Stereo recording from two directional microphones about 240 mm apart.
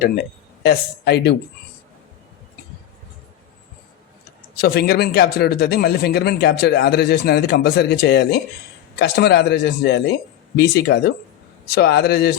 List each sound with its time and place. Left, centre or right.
0.6 s a man's voice: left
4.5 s a man's voice: left